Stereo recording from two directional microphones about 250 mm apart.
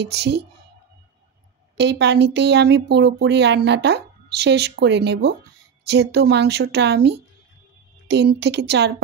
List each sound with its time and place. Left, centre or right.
0.0 s speech: right
1.8 s speech: right